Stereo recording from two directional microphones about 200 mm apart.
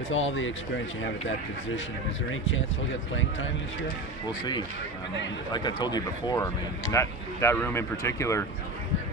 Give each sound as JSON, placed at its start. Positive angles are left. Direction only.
{"t": 0.1, "sound": "speech", "side_deg": 75}
{"t": 4.3, "sound": "speech", "side_deg": 20}